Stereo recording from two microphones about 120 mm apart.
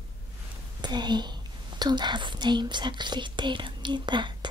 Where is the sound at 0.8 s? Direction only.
35° right (ahead or behind).